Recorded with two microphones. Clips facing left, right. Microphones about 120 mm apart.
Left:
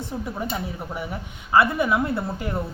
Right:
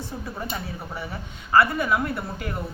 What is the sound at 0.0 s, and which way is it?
A woman's voice, 20° left (ahead or behind).